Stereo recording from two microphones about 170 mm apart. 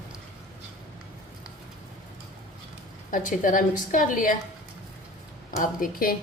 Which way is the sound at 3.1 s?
50° left (ahead or behind).